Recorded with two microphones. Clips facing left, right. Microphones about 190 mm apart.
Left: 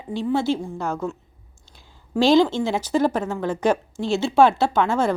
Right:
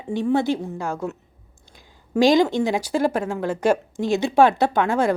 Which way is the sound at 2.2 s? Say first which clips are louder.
Even; 15° right (ahead or behind).